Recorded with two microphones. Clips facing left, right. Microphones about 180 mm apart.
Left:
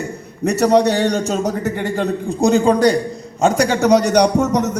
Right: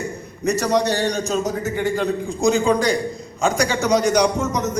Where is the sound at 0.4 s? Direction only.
65° left (ahead or behind).